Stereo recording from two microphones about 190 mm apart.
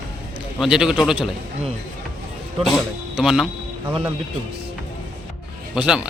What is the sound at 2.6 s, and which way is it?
Speech, centre (ahead or behind).